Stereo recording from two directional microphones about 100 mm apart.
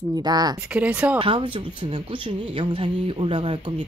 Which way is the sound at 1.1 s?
60° right (ahead or behind).